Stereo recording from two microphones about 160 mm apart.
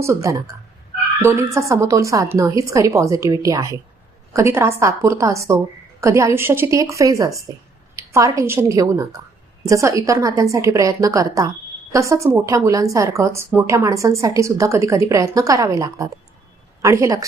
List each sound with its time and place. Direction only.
0.0 s a woman's voice: 20° right (ahead or behind)